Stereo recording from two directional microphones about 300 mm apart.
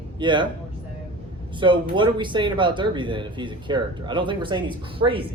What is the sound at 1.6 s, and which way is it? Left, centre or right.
Speech, centre.